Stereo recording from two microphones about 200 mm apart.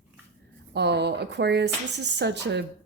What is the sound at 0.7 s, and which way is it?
Speech, 55° right (ahead or behind).